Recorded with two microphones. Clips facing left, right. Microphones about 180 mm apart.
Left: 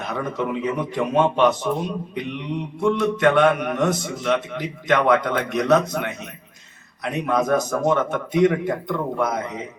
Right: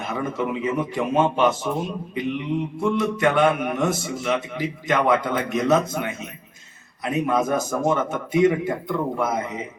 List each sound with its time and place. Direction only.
0.0 s a man's voice: 5° right (ahead or behind)
7.0 s a man's voice: 5° right (ahead or behind)